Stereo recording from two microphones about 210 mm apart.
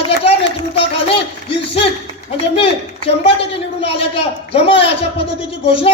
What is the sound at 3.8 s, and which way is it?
A man's voice, 30° left (ahead or behind).